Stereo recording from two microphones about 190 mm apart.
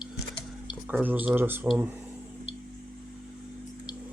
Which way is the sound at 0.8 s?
10° right (ahead or behind).